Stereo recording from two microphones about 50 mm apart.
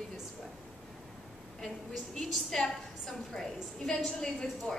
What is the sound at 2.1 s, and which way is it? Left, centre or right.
A woman's voice, centre.